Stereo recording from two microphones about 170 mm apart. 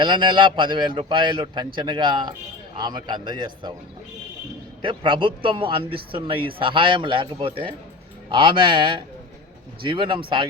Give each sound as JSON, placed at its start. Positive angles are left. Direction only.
{"t": 0.0, "sound": "a man's voice", "side_deg": -25}
{"t": 4.8, "sound": "a man's voice", "side_deg": -30}